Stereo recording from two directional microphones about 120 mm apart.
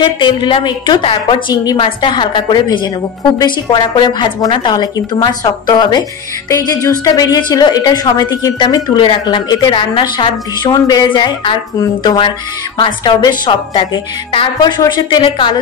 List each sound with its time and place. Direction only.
0.0 s a woman's voice: 40° left (ahead or behind)